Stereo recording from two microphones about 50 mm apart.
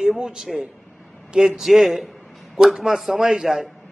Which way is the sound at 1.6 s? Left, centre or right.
Centre.